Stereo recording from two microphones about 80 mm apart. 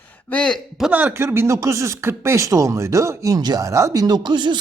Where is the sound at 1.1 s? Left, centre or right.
Right.